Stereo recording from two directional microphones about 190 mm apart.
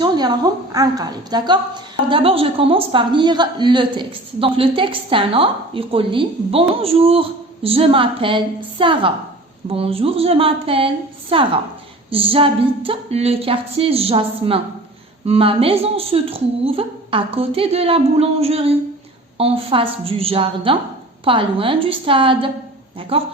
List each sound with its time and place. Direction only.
0.0 s a woman's voice: 20° right (ahead or behind)